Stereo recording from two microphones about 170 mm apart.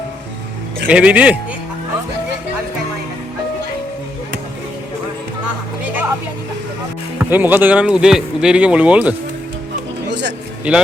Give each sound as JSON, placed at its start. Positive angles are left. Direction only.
{"t": 0.9, "sound": "speech", "side_deg": -10}
{"t": 7.2, "sound": "speech", "side_deg": -10}
{"t": 10.1, "sound": "a sound", "side_deg": -90}
{"t": 10.7, "sound": "speech", "side_deg": -10}